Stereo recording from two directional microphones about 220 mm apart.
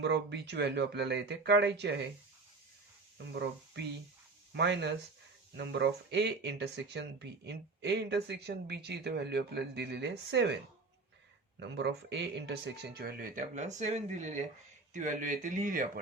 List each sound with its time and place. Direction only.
0.0 s speech: 50° right (ahead or behind)
4.5 s speech: 50° right (ahead or behind)
11.6 s speech: 50° right (ahead or behind); by 15.9 s 35° right (ahead or behind)